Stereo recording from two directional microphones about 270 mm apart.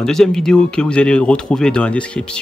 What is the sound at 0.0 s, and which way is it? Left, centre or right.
Speech, centre.